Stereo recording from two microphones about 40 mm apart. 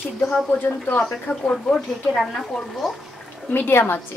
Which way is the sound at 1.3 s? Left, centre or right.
Left.